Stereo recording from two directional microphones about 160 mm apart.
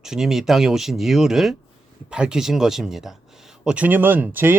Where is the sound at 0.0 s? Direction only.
5° right (ahead or behind).